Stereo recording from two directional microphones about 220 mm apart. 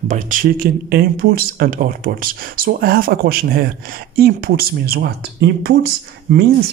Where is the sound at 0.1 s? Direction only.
40° right (ahead or behind).